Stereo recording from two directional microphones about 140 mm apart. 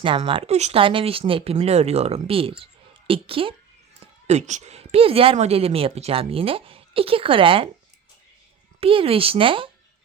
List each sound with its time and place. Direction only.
0.0 s a woman's voice: 40° right (ahead or behind)
4.0 s a woman's voice: 55° right (ahead or behind); by 7.7 s 40° right (ahead or behind)
8.8 s speech: 40° right (ahead or behind)